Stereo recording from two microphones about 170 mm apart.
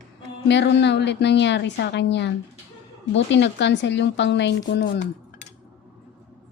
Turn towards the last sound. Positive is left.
turn(degrees=90)